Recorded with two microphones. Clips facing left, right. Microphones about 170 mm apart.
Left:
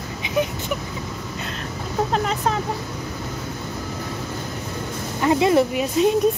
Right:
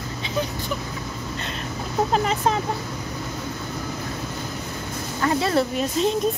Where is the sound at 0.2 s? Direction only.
15° left (ahead or behind).